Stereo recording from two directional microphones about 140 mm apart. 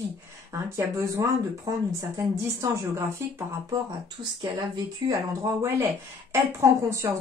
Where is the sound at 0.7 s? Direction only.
25° right (ahead or behind).